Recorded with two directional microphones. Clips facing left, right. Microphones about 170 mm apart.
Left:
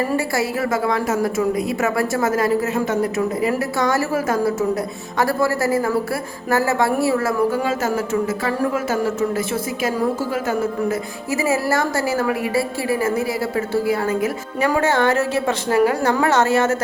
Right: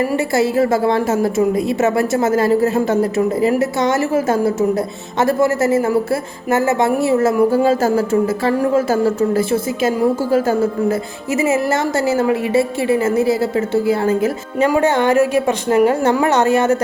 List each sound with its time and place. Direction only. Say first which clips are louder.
0.3 s a woman's voice: right 6 dB; 25° right (ahead or behind)
11.3 s a woman's voice: right 3 dB; 20° right (ahead or behind)